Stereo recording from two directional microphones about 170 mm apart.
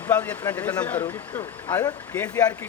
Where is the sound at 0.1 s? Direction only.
10° left (ahead or behind).